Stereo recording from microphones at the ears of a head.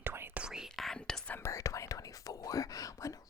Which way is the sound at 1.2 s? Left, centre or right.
Left.